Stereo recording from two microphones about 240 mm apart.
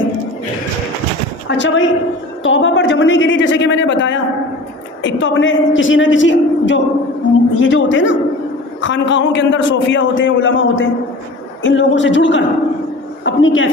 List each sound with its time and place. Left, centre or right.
1.5 s a man's voice: left